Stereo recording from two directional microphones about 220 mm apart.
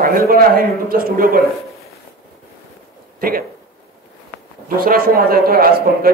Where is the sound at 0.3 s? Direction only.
40° right (ahead or behind).